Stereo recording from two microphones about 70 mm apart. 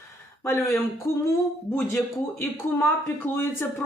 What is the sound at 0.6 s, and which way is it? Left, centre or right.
Speech, left.